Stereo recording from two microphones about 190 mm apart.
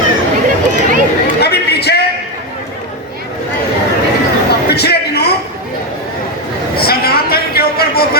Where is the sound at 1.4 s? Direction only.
60° left (ahead or behind).